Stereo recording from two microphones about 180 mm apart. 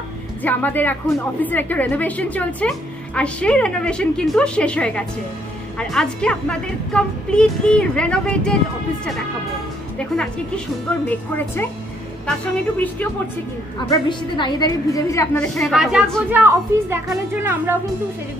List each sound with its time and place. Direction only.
0.4 s a woman's voice: 10° left (ahead or behind)
9.9 s a woman's voice: 5° left (ahead or behind)
13.8 s a woman's voice: 25° left (ahead or behind)
15.3 s a woman's voice: 5° left (ahead or behind)